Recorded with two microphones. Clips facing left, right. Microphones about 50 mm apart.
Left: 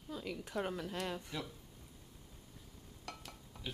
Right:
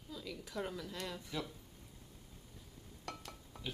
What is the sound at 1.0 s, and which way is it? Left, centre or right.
Speech, centre.